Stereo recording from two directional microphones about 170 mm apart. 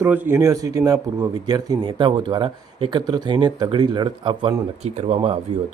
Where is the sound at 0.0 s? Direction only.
15° right (ahead or behind).